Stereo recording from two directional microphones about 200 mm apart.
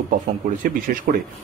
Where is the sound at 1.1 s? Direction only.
45° right (ahead or behind).